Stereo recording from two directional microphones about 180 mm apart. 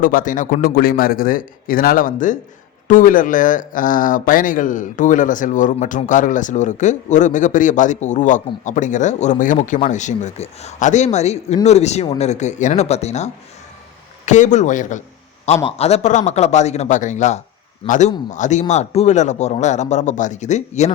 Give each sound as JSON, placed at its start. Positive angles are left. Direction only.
{"t": 0.0, "sound": "a man's voice", "side_deg": 50}